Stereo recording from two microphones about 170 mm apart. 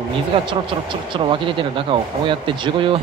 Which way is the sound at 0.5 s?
30° right (ahead or behind).